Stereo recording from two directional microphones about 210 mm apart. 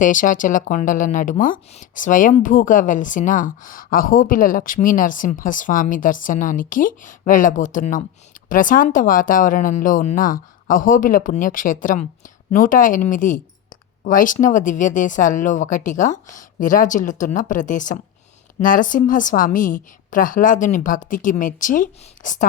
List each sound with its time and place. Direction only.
0.0 s a woman's voice: 40° left (ahead or behind)